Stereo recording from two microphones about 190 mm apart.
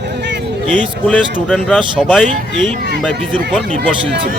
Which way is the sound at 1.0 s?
5° left (ahead or behind).